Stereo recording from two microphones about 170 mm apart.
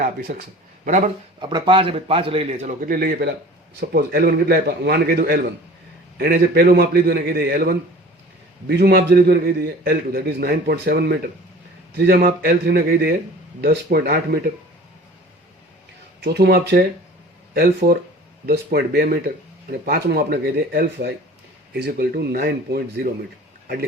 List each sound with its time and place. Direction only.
0.0 s a man's voice: 65° right (ahead or behind)
0.9 s speech: 45° right (ahead or behind)
1.4 s a man's voice: 30° right (ahead or behind); by 7.8 s 60° right (ahead or behind)
8.6 s a man's voice: 70° right (ahead or behind)
16.2 s speech: 80° right